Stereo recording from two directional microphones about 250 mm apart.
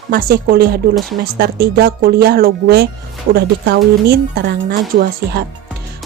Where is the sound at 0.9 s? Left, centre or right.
Centre.